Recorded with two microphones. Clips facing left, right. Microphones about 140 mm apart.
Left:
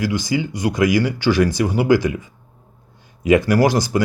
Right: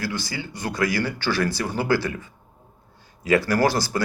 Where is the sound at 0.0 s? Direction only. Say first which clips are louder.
Left 9 dB; 15° left (ahead or behind).